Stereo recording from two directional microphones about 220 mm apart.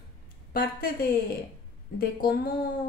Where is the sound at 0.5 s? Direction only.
45° left (ahead or behind).